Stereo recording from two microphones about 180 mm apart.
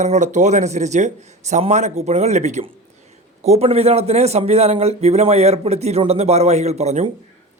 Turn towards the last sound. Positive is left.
turn(degrees=-40)  # may be behind; listen again after turning